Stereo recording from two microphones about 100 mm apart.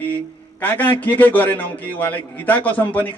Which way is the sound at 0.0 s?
20° left (ahead or behind).